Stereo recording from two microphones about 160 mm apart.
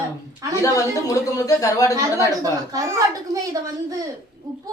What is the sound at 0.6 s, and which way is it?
A woman's voice, 20° left (ahead or behind).